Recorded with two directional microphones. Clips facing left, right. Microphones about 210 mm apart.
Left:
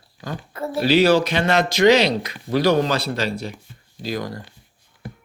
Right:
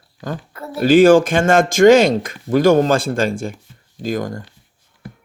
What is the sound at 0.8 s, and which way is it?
Speech, 50° right (ahead or behind).